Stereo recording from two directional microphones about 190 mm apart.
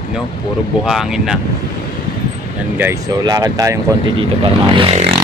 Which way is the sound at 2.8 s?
15° right (ahead or behind).